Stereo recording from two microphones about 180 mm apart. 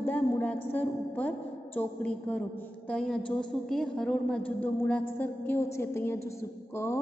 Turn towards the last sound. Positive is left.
turn(degrees=15)  # may be behind; listen again after turning